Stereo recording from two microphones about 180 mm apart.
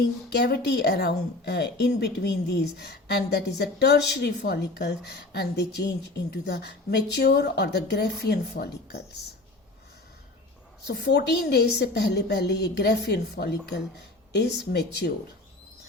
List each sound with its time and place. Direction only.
0.3 s speech: 65° left (ahead or behind)
10.8 s a woman's voice: 65° left (ahead or behind)